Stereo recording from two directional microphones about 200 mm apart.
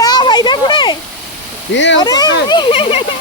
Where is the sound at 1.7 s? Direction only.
65° left (ahead or behind).